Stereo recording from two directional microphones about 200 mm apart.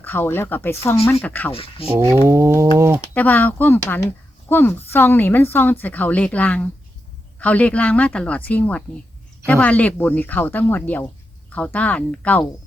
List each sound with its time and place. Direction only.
0.0 s speech: 10° left (ahead or behind)
1.5 s speech: 30° left (ahead or behind)
2.2 s a sound: 15° right (ahead or behind)
3.2 s speech: 10° left (ahead or behind)